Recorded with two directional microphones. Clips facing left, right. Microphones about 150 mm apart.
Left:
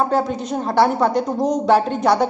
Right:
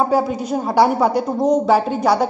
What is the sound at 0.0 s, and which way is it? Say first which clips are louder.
A woman's voice: right 2 dB; 10° right (ahead or behind).